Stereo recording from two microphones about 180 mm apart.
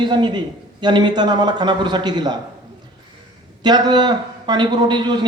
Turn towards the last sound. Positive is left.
turn(degrees=-25)  # may be behind; listen again after turning